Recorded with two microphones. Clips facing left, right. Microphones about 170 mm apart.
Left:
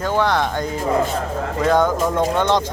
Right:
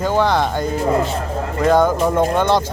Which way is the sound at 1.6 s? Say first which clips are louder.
Right 3 dB; 10° right (ahead or behind).